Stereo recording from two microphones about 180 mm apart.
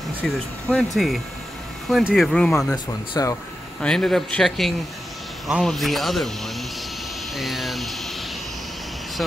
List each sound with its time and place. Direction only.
0.2 s speech: 5° left (ahead or behind)
3.2 s speech: 20° left (ahead or behind)
3.8 s speech: 5° left (ahead or behind)